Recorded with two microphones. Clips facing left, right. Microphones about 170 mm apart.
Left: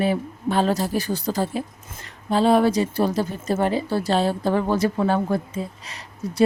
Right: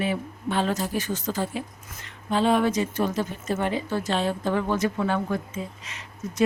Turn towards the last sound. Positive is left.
turn(degrees=35)  # may be behind; listen again after turning